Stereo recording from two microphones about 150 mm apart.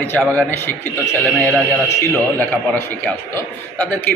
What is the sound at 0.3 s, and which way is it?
Speech, 15° left (ahead or behind).